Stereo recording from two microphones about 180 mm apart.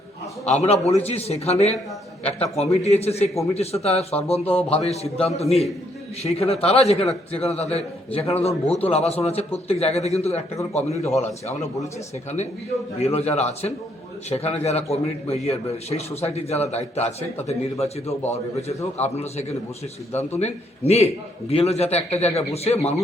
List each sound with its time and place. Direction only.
0.4 s a man's voice: 35° left (ahead or behind)
13.0 s a man's voice: 35° left (ahead or behind)